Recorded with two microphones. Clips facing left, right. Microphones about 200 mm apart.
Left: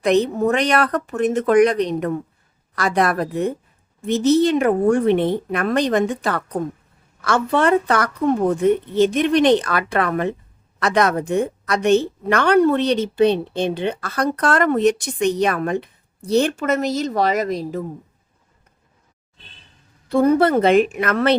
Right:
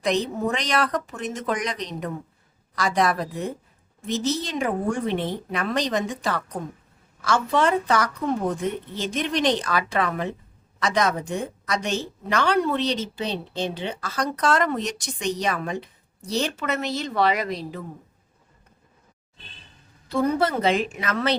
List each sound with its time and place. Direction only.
0.0 s a woman's voice: 60° left (ahead or behind); by 17.8 s 45° left (ahead or behind)
20.1 s a woman's voice: 55° left (ahead or behind)